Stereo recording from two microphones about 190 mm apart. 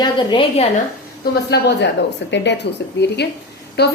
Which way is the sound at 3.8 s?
60° left (ahead or behind).